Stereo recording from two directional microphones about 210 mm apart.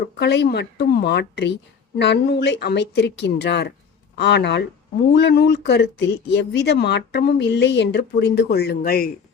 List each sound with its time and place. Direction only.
0.2 s speech: 50° left (ahead or behind)